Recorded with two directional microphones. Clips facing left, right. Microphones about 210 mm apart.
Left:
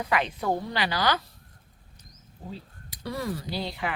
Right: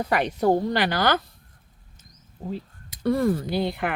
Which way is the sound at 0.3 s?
40° right (ahead or behind).